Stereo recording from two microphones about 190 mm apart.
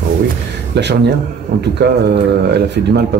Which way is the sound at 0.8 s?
65° right (ahead or behind).